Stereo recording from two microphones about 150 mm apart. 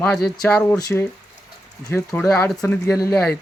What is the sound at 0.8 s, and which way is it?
Speech, 25° left (ahead or behind).